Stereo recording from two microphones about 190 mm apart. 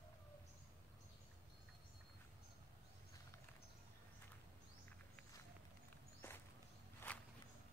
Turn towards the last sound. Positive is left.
turn(degrees=10)  # may be behind; listen again after turning